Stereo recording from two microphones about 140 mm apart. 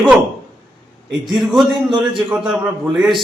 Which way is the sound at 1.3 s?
Centre (ahead or behind).